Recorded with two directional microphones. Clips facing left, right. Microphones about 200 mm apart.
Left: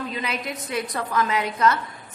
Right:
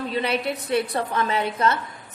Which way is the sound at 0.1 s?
30° right (ahead or behind).